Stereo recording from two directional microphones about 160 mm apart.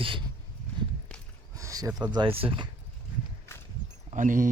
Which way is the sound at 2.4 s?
35° right (ahead or behind).